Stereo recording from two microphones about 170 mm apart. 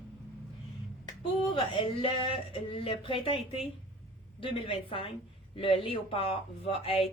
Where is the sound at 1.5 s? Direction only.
30° left (ahead or behind).